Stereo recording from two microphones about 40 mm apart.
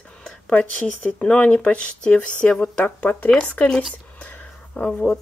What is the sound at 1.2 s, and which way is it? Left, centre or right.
Speech, left.